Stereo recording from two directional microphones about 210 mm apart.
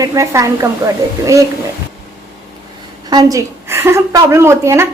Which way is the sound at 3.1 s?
15° right (ahead or behind).